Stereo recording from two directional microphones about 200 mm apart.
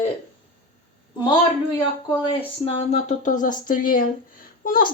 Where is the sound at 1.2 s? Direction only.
20° left (ahead or behind).